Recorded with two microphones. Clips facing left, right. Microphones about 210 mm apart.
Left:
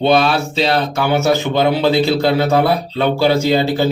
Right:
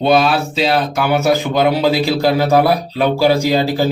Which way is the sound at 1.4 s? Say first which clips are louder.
Even; 25° left (ahead or behind).